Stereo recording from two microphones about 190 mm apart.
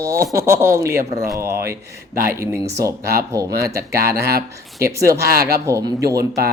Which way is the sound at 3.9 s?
55° right (ahead or behind).